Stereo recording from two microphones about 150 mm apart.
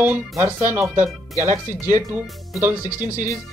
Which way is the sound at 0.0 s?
15° right (ahead or behind).